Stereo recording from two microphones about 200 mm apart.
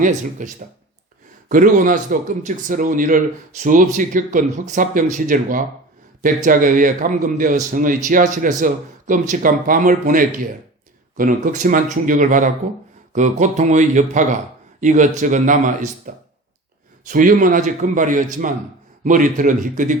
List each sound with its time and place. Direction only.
0.0 s a man's voice: 40° right (ahead or behind)